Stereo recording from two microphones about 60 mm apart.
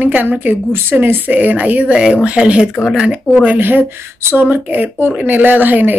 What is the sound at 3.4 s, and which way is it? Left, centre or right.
Speech, right.